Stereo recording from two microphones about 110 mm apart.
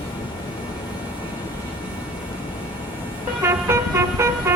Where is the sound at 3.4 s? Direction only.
25° right (ahead or behind).